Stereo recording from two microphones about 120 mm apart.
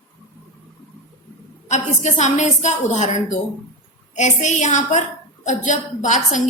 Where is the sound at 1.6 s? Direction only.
75° left (ahead or behind).